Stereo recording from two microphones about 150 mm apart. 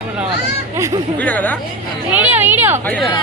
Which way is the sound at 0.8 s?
20° right (ahead or behind).